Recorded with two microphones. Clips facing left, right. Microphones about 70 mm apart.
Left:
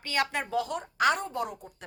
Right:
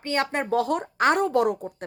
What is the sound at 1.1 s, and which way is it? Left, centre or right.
Speech, right.